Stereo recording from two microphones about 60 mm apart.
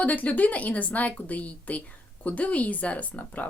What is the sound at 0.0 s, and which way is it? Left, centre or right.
Speech, left.